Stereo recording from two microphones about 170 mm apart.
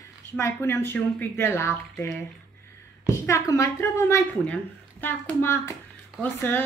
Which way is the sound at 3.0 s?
15° left (ahead or behind).